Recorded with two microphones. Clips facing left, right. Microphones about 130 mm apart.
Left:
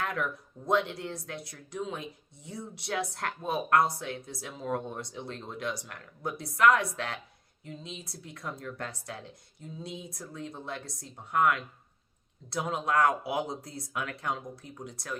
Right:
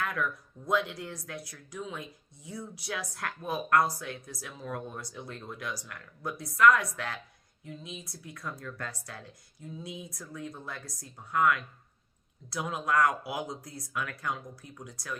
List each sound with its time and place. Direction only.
0.0 s speech: 25° left (ahead or behind)